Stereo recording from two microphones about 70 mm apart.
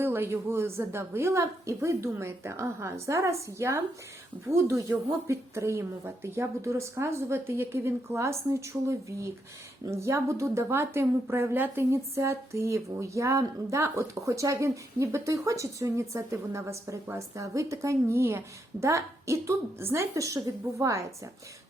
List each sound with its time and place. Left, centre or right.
0.0 s a woman's voice: right
20.1 s a woman's voice: right